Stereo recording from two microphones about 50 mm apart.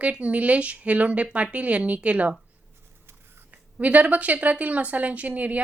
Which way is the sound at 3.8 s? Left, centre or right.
Right.